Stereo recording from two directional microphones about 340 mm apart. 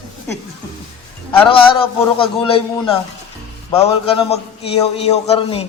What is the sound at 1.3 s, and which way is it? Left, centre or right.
A man's voice, centre.